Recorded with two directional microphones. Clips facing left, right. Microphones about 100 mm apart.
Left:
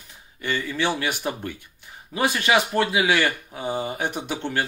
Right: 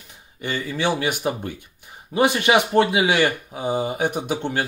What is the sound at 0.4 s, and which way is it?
Speech, 15° right (ahead or behind).